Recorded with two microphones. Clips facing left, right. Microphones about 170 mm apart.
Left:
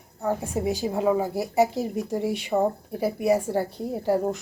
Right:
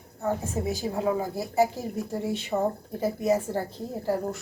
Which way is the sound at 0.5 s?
20° left (ahead or behind).